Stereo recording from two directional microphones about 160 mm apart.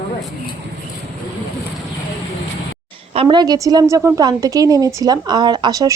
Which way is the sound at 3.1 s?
35° right (ahead or behind).